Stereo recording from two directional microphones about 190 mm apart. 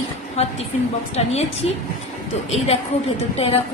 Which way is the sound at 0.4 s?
35° left (ahead or behind).